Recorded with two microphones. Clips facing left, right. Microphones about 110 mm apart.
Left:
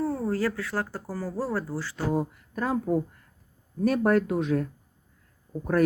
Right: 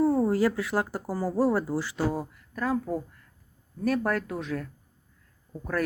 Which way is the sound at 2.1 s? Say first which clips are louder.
Left 5 dB; 20° left (ahead or behind).